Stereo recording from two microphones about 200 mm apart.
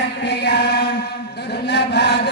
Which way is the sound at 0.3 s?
55° left (ahead or behind).